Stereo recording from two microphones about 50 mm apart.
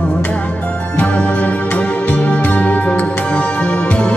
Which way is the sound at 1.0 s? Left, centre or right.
Left.